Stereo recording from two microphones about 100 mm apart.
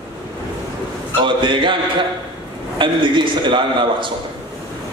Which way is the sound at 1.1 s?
55° right (ahead or behind).